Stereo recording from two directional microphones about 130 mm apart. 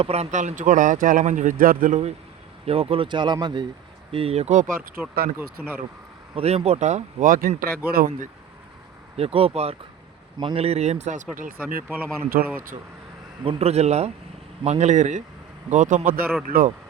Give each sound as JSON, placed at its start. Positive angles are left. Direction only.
{"t": 0.0, "sound": "speech", "side_deg": -55}
{"t": 2.6, "sound": "speech", "side_deg": -45}
{"t": 4.1, "sound": "speech", "side_deg": -50}
{"t": 4.9, "sound": "speech", "side_deg": -15}
{"t": 6.3, "sound": "speech", "side_deg": -50}
{"t": 9.1, "sound": "speech", "side_deg": -50}
{"t": 11.3, "sound": "speech", "side_deg": -90}
{"t": 11.9, "sound": "speech", "side_deg": -15}
{"t": 13.4, "sound": "speech", "side_deg": -50}